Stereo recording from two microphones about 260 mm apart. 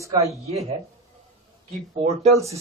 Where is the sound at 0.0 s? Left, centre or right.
Centre.